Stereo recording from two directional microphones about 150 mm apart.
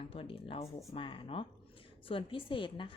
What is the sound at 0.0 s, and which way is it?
A woman's voice, 40° left (ahead or behind).